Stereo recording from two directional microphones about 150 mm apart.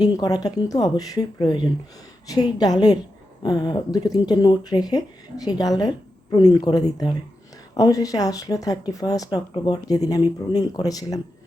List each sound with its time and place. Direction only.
0.0 s speech: 25° left (ahead or behind)